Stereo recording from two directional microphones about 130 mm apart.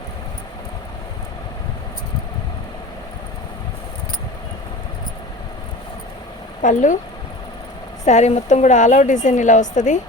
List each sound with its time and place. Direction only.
6.6 s speech: 80° left
8.0 s a woman's voice: 60° left (ahead or behind)